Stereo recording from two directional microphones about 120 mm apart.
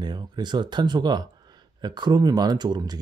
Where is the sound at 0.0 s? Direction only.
35° right (ahead or behind).